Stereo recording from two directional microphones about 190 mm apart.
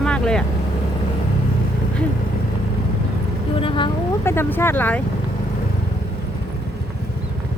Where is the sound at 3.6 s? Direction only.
25° left (ahead or behind).